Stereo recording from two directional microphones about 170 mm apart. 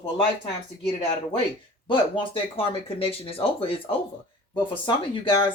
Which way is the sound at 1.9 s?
30° left (ahead or behind).